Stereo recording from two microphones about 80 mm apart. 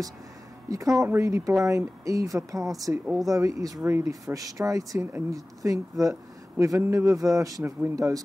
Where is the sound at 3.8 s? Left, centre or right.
Right.